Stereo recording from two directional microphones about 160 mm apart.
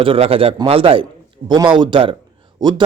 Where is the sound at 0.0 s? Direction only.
35° right (ahead or behind).